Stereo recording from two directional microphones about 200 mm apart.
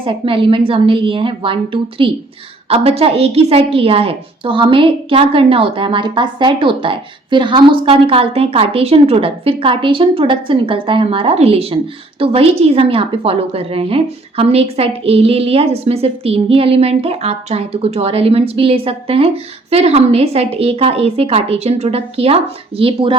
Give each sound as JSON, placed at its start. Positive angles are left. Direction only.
{"t": 0.0, "sound": "a woman's voice", "side_deg": -25}